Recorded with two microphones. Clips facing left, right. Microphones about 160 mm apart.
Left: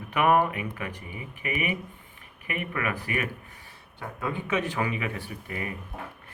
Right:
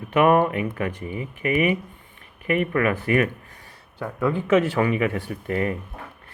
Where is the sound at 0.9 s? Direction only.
30° right (ahead or behind).